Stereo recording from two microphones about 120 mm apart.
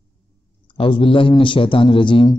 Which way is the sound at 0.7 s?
45° left (ahead or behind).